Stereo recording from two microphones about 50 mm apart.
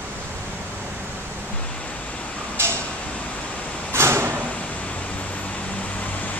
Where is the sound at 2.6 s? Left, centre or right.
Right.